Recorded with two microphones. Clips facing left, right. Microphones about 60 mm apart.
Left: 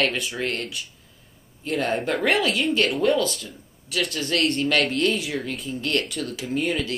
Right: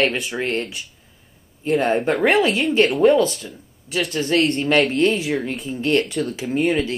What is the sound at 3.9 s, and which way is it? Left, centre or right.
Speech, right.